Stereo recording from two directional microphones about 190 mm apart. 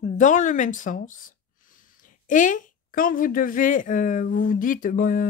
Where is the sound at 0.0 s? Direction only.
40° left (ahead or behind).